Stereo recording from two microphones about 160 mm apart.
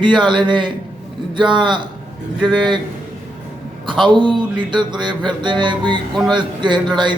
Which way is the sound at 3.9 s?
30° right (ahead or behind).